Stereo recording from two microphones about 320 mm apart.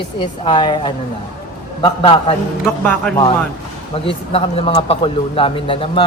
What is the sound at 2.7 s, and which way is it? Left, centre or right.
Speech, centre.